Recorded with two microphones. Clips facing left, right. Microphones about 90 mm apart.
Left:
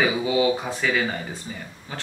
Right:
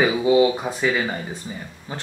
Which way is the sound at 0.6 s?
10° right (ahead or behind).